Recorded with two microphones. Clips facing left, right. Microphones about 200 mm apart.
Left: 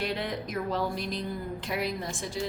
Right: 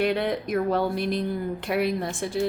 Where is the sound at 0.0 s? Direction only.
60° right (ahead or behind).